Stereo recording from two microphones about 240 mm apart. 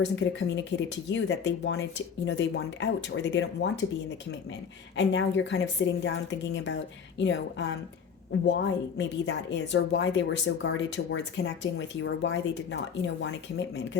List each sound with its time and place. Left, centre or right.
0.0 s a woman's voice: left
4.9 s a woman's voice: left